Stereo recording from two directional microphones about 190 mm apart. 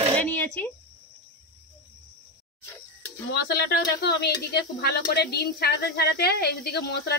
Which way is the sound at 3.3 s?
55° left (ahead or behind).